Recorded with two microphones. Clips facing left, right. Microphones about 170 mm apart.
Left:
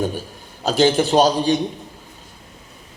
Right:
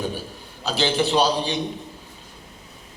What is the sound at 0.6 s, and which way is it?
Speech, 45° left (ahead or behind).